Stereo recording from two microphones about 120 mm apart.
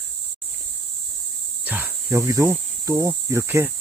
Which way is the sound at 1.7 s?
15° right (ahead or behind).